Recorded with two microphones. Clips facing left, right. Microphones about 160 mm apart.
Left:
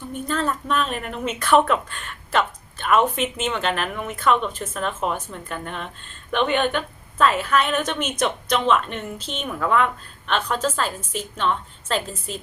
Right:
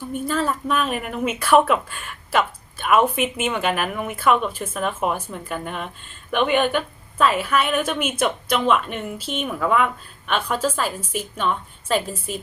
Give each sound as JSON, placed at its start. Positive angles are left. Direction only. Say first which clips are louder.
{"t": 0.1, "sound": "a woman's voice", "louder": "right 1 dB", "side_deg": -5}